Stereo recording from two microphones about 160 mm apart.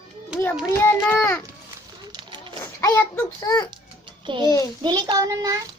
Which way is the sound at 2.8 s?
15° left (ahead or behind).